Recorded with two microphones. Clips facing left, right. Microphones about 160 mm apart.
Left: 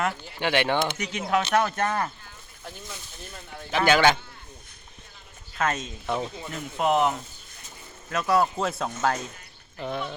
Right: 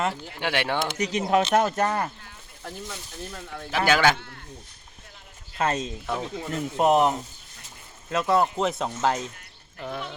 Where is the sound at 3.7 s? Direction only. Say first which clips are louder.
Left 1 dB; 5° right (ahead or behind).